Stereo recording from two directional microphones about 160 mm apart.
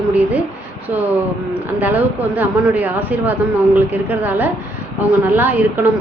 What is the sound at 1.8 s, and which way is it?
A woman's voice, 10° right (ahead or behind).